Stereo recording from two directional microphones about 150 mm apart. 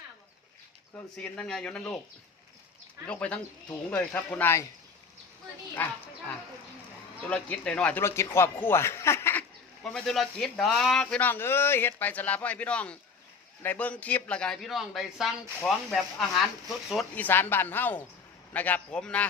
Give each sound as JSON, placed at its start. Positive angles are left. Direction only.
{"t": 0.9, "sound": "speech", "side_deg": 5}
{"t": 3.1, "sound": "speech", "side_deg": 5}
{"t": 5.7, "sound": "speech", "side_deg": 10}
{"t": 9.8, "sound": "speech", "side_deg": 0}